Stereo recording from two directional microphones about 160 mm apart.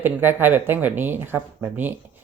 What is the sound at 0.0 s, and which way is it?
Speech, 15° right (ahead or behind).